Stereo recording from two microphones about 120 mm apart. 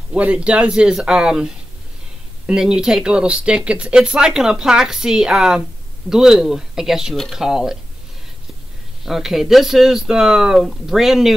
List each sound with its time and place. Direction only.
0.1 s speech: 10° right (ahead or behind)
9.0 s speech: centre (ahead or behind)